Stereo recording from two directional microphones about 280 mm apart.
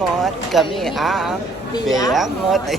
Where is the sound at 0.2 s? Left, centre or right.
Centre.